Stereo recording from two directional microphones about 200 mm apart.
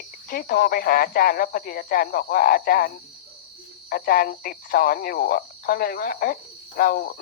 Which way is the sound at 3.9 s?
45° left (ahead or behind).